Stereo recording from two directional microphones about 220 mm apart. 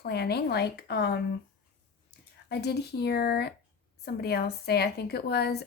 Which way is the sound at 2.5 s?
50° left (ahead or behind).